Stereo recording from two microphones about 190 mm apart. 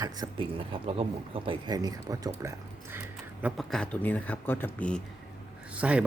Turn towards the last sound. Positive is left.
turn(degrees=-5)  # may be behind; listen again after turning